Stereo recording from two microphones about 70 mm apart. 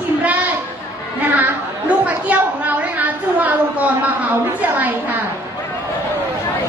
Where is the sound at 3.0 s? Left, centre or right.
Right.